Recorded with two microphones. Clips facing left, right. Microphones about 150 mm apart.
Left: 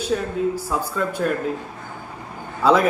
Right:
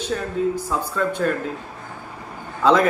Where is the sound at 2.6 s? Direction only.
10° left (ahead or behind).